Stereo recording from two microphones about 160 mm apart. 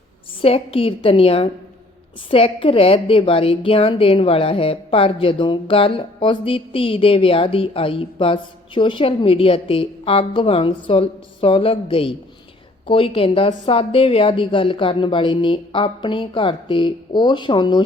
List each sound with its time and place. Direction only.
0.4 s a woman's voice: 35° left (ahead or behind)